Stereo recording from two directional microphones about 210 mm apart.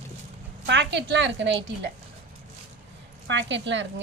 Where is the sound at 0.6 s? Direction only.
55° right (ahead or behind).